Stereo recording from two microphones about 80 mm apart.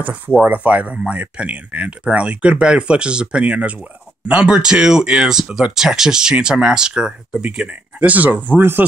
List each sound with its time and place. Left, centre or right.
0.4 s speech: centre